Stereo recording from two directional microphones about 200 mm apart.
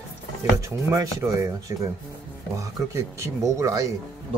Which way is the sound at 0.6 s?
15° right (ahead or behind).